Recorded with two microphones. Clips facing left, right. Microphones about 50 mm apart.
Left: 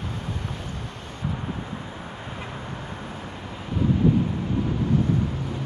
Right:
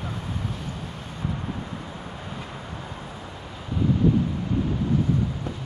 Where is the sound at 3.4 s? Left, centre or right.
Centre.